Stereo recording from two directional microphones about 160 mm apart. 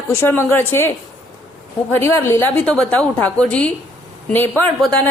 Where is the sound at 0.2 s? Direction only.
15° left (ahead or behind).